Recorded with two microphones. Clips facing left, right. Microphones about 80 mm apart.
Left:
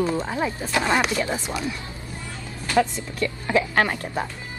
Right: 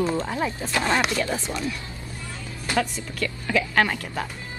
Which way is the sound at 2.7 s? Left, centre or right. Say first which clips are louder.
Left 5 dB; left.